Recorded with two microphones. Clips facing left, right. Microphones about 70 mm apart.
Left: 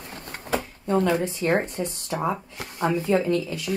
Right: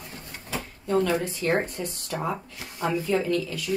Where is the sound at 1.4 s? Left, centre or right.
Left.